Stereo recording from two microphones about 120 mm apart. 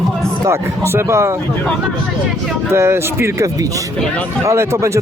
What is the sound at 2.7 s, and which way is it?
Speech, 20° right (ahead or behind).